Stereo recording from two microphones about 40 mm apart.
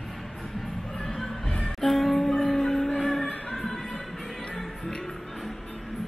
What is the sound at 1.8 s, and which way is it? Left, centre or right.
Music, centre.